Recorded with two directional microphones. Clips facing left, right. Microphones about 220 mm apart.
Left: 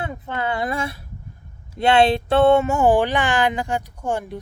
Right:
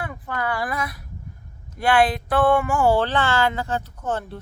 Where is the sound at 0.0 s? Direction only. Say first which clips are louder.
Left 2 dB; 25° left (ahead or behind).